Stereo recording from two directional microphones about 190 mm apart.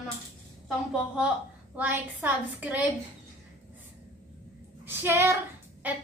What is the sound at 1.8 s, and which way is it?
A woman's voice, 10° right (ahead or behind).